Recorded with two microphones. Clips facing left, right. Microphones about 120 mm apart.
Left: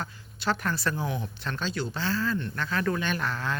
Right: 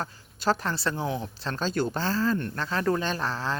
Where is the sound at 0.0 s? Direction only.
40° right (ahead or behind).